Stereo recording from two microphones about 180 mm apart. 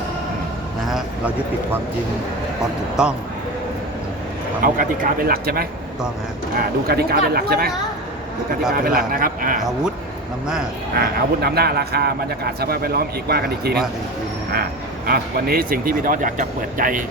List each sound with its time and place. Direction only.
0.9 s speech: centre (ahead or behind)
2.9 s speech: 5° right (ahead or behind)
4.6 s speech: 50° right (ahead or behind)
8.7 s speech: 55° right (ahead or behind)
10.9 s speech: 60° right (ahead or behind)
15.0 s speech: 55° right (ahead or behind)